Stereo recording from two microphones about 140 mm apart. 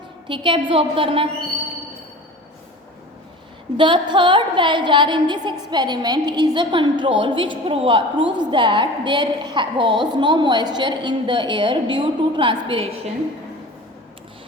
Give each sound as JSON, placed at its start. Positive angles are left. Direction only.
{"t": 0.3, "sound": "a woman's voice", "side_deg": -35}
{"t": 3.8, "sound": "a woman's voice", "side_deg": -35}